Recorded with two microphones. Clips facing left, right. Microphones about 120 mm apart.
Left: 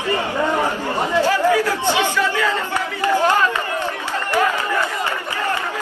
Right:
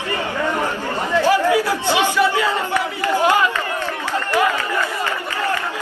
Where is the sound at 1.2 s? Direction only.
15° right (ahead or behind).